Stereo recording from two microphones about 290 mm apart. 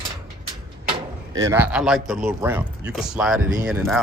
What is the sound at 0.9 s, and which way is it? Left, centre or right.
Speech, centre.